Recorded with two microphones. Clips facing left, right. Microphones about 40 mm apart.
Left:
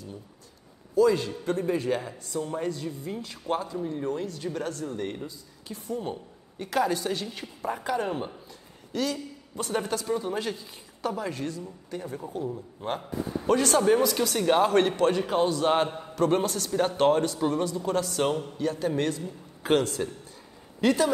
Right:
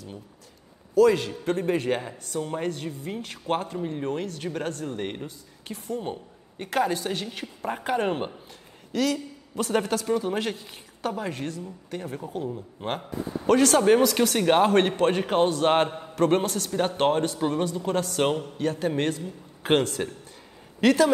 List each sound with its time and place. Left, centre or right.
0.9 s a man's voice: right
8.9 s a man's voice: right
20.8 s a man's voice: right